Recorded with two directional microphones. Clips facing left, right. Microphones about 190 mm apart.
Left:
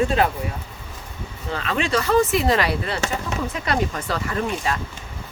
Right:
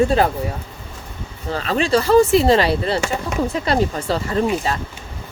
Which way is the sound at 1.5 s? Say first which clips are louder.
Right 5 dB; 35° right (ahead or behind).